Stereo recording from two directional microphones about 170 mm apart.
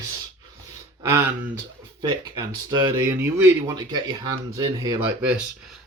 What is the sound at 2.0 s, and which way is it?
Speech, 20° right (ahead or behind).